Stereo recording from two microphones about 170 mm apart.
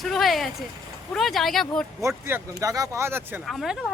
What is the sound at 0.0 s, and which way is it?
Speech, centre (ahead or behind).